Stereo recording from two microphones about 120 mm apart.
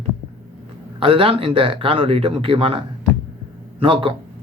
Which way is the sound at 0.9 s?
50° right (ahead or behind).